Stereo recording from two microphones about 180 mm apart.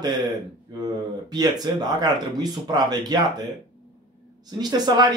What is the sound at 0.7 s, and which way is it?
Speech, 20° right (ahead or behind).